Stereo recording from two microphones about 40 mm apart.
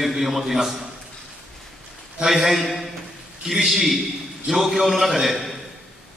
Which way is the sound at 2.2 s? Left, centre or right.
Centre.